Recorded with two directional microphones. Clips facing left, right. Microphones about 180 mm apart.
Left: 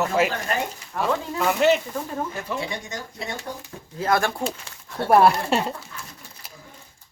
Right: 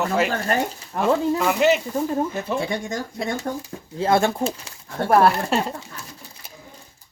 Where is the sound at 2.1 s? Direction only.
25° right (ahead or behind).